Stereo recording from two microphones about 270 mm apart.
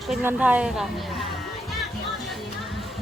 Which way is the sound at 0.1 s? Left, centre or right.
Centre.